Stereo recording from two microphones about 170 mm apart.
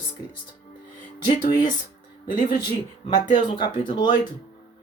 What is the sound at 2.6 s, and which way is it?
Speech, 25° left (ahead or behind).